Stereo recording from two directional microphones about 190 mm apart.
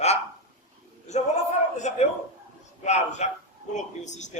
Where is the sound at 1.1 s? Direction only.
35° left (ahead or behind).